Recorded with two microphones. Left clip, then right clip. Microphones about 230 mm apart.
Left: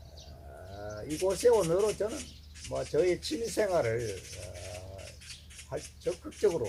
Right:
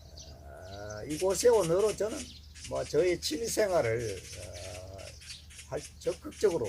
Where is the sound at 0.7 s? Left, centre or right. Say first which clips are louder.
Even; centre.